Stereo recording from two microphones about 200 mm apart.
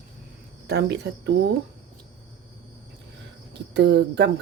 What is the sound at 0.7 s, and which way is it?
Speech, 55° right (ahead or behind).